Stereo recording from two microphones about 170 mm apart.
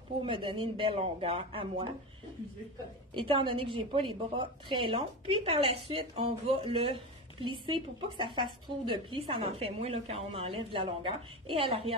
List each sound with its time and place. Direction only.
0.2 s a woman's voice: 30° right (ahead or behind)
3.2 s a woman's voice: 30° right (ahead or behind)